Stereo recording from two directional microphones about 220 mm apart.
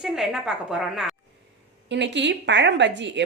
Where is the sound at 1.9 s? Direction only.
55° right (ahead or behind).